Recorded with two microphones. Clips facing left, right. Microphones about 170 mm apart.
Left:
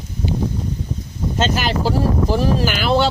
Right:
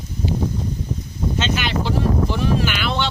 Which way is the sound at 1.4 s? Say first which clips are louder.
Left 4 dB; 40° left (ahead or behind).